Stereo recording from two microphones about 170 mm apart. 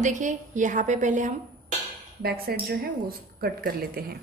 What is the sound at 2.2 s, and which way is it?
A woman's voice, 65° right (ahead or behind).